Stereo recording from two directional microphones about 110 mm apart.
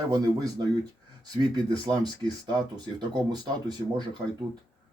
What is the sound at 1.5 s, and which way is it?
Speech, 40° right (ahead or behind).